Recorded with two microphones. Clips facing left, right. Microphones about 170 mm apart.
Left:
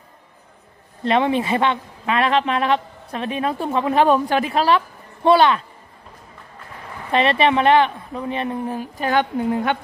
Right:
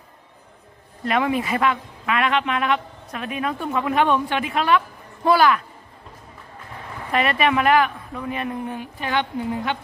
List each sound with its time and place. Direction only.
1.0 s speech: 30° left (ahead or behind)
7.1 s a woman's voice: 30° left (ahead or behind); by 9.8 s 50° left (ahead or behind)